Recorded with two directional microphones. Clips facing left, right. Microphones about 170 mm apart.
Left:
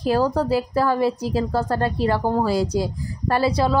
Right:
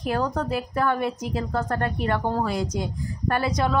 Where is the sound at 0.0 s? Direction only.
30° left (ahead or behind).